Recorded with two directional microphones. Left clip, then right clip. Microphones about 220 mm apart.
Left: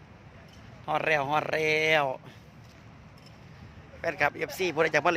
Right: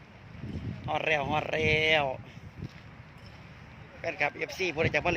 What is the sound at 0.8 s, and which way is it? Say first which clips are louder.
Speech: left 2 dB; 10° left (ahead or behind).